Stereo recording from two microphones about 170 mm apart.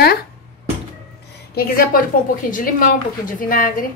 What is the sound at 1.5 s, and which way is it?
A woman's voice, 60° left (ahead or behind).